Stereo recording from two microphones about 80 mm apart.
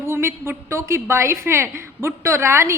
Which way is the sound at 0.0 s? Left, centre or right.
Right.